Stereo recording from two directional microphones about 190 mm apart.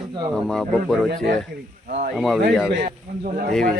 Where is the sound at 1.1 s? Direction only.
55° right (ahead or behind).